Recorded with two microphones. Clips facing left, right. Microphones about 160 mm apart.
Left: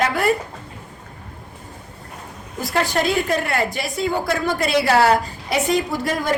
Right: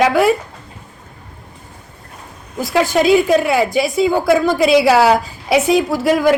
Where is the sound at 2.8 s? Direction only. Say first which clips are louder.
Right 9 dB; 5° right (ahead or behind).